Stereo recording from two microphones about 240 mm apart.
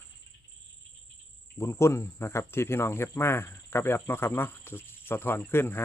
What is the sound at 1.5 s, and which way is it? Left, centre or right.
Speech, centre.